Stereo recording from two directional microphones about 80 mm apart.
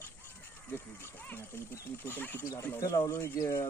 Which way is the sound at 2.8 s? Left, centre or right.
Left.